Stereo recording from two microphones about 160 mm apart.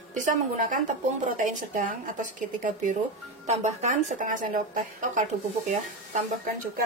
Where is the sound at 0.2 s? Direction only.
55° right (ahead or behind).